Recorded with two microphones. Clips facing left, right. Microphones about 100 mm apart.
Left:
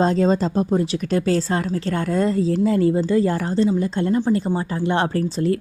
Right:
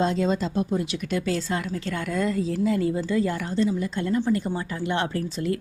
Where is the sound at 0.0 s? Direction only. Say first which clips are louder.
Left 6 dB; 40° left (ahead or behind).